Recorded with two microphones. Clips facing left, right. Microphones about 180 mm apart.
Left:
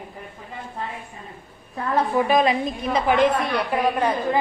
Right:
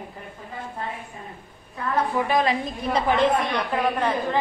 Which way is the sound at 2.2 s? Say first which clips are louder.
Left 4 dB; 20° left (ahead or behind).